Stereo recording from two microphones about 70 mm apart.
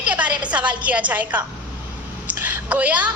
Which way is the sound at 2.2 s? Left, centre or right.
Right.